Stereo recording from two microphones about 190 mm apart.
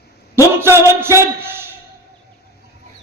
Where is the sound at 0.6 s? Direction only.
15° right (ahead or behind).